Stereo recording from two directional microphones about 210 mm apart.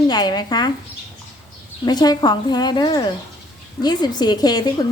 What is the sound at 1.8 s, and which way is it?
A woman's voice, 20° left (ahead or behind).